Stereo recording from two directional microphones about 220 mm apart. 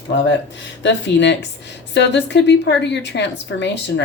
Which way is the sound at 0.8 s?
55° left (ahead or behind).